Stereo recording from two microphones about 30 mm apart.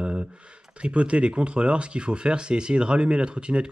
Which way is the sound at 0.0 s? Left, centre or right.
Right.